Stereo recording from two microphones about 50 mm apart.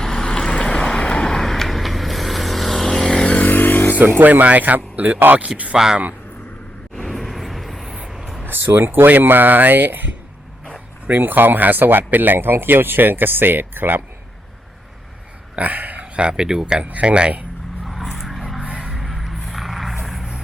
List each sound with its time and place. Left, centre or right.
0.0 s vehicle: centre
3.2 s vehicle: left
3.4 s vehicle: left
4.2 s speech: right
5.7 s speech: centre
6.9 s vehicle: centre
8.4 s speech: right
11.2 s speech: right
15.5 s speech: right; by 16.8 s centre
16.8 s speech: right
17.8 s vehicle: centre